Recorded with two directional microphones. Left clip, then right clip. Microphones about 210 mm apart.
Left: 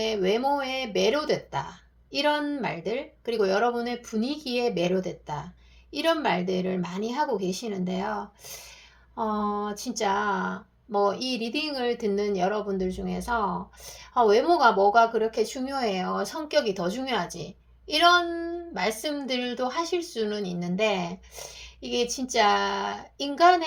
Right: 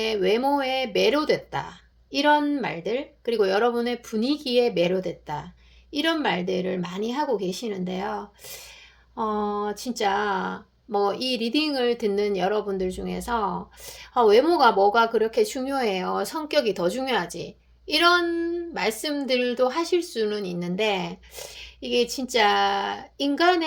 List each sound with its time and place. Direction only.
0.0 s speech: 35° right (ahead or behind)